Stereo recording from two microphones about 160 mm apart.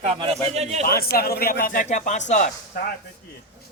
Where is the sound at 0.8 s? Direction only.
70° left (ahead or behind); by 2.4 s 50° left (ahead or behind).